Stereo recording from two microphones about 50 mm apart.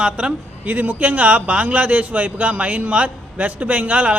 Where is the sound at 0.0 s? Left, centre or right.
Right.